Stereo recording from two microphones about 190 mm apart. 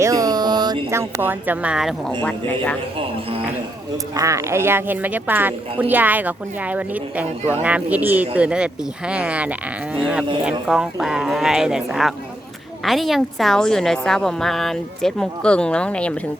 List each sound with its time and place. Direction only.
0.0 s speech: 20° right (ahead or behind); by 2.7 s 5° left (ahead or behind)
4.1 s a woman's voice: 15° right (ahead or behind); by 16.1 s 5° left (ahead or behind)